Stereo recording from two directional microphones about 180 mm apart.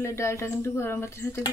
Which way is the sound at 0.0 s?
15° left (ahead or behind).